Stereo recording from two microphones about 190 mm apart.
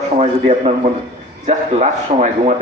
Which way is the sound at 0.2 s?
35° right (ahead or behind).